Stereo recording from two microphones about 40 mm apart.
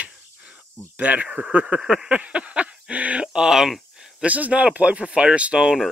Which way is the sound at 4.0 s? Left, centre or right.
Centre.